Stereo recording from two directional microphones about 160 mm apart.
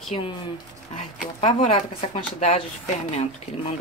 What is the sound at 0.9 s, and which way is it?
Speech, 45° left (ahead or behind).